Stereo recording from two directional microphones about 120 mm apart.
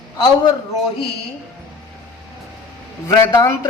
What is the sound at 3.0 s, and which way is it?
Speech, 25° left (ahead or behind).